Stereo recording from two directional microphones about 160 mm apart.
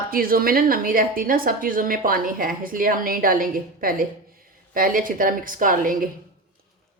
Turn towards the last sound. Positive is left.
turn(degrees=-60)  # may be behind; listen again after turning